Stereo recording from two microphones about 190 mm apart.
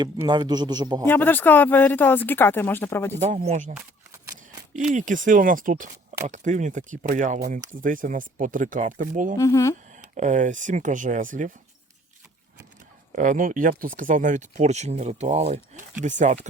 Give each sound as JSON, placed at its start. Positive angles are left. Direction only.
{"t": 0.0, "sound": "speech", "side_deg": -20}
{"t": 1.0, "sound": "speech", "side_deg": 10}
{"t": 3.2, "sound": "speech", "side_deg": -35}
{"t": 3.8, "sound": "a sound", "side_deg": -15}
{"t": 4.7, "sound": "speech", "side_deg": -40}
{"t": 9.4, "sound": "speech", "side_deg": 15}
{"t": 10.2, "sound": "speech", "side_deg": -40}
{"t": 13.1, "sound": "speech", "side_deg": -45}